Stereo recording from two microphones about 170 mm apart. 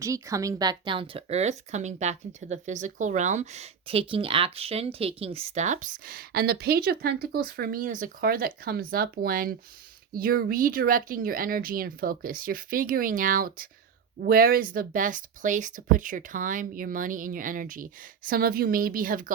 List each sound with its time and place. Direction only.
0.0 s speech: 20° right (ahead or behind); by 19.3 s 55° right (ahead or behind)